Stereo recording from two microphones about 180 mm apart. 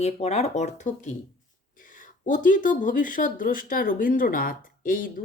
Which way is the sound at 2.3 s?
45° left (ahead or behind).